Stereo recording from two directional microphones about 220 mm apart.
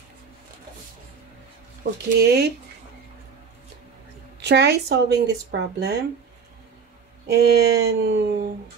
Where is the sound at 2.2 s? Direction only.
45° right (ahead or behind).